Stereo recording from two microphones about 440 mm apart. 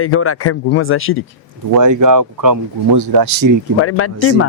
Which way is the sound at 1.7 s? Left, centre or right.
Right.